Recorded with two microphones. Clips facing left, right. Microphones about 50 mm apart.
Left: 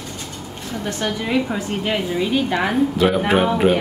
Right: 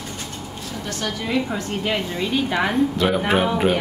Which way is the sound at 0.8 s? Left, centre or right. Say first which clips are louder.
Left 4 dB; left.